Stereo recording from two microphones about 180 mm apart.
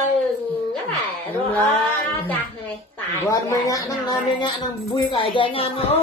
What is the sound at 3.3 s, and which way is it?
Speech, 20° left (ahead or behind).